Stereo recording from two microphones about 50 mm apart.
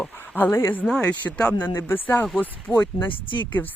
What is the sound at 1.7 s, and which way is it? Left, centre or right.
Speech, left.